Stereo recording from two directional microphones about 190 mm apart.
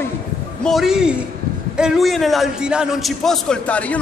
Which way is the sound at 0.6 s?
Centre (ahead or behind).